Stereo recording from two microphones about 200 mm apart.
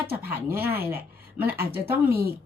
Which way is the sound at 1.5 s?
50° right (ahead or behind).